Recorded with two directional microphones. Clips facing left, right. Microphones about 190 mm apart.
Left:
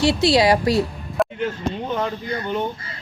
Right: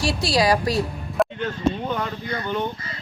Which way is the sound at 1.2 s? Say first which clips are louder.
Even; centre (ahead or behind).